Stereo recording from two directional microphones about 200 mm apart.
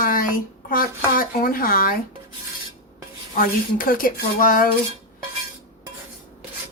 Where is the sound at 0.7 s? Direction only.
45° left (ahead or behind).